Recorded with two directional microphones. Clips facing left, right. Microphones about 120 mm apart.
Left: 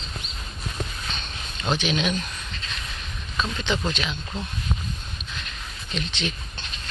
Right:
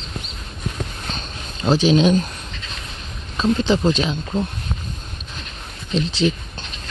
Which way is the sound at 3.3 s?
35° right (ahead or behind).